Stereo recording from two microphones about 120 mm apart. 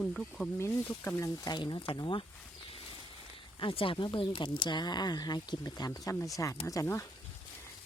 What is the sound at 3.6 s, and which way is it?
Speech, 45° left (ahead or behind).